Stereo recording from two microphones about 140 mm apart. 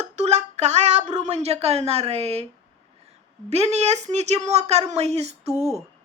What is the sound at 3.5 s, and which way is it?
A woman's voice, 50° right (ahead or behind).